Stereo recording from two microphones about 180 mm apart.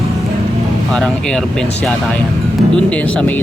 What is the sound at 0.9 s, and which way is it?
Speech, 5° left (ahead or behind).